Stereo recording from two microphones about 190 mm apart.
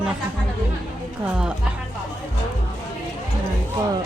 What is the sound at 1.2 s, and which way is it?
Speech, 5° right (ahead or behind).